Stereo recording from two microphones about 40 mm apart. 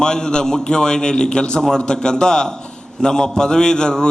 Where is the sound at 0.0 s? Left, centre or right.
Centre.